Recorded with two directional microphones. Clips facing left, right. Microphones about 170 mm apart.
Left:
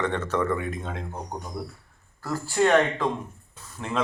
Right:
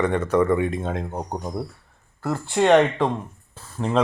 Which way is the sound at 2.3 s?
30° right (ahead or behind).